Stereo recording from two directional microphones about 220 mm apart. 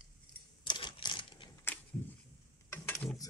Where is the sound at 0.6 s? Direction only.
20° left (ahead or behind).